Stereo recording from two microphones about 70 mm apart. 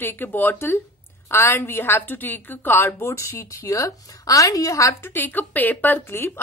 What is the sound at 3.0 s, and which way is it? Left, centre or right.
A woman's voice, left.